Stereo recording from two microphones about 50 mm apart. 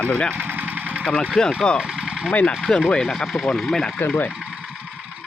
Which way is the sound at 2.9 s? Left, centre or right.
Centre.